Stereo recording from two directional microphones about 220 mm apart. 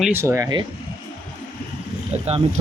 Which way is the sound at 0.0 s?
10° right (ahead or behind).